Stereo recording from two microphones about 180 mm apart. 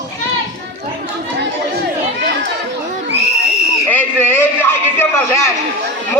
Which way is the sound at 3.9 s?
10° left (ahead or behind).